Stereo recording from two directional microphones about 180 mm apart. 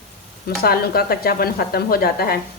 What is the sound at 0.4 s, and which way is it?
A woman's voice, 60° left (ahead or behind).